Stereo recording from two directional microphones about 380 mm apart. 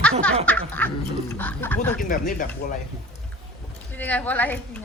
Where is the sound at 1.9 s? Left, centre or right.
Left.